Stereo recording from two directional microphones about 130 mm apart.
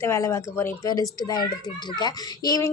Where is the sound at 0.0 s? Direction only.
20° left (ahead or behind).